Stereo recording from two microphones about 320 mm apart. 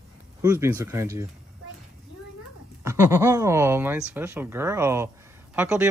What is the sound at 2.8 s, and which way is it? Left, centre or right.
Speech, centre.